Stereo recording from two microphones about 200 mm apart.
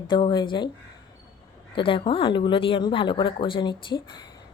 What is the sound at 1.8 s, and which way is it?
A woman's voice, 25° left (ahead or behind).